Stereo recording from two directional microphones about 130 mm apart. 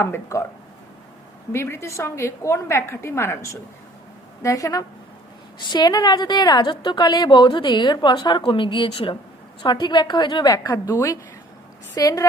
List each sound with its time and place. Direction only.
0.0 s a woman's voice: 20° left (ahead or behind)
1.5 s a woman's voice: 20° left (ahead or behind)